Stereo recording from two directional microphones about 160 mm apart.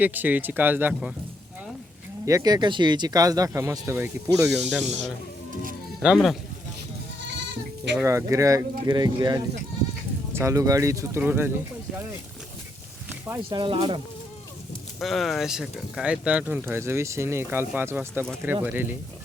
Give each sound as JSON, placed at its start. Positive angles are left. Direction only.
{"t": 0.0, "sound": "speech", "side_deg": -10}
{"t": 2.2, "sound": "speech", "side_deg": -20}
{"t": 4.4, "sound": "speech", "side_deg": -5}
{"t": 8.0, "sound": "speech", "side_deg": -20}
{"t": 13.1, "sound": "a sound", "side_deg": -15}
{"t": 13.5, "sound": "speech", "side_deg": -30}
{"t": 14.9, "sound": "speech", "side_deg": 0}